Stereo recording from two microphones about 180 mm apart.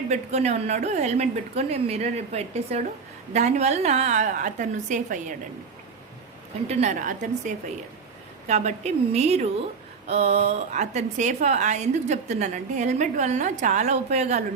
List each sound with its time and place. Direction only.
0.1 s a woman's voice: 40° right (ahead or behind)
6.7 s a woman's voice: 40° right (ahead or behind)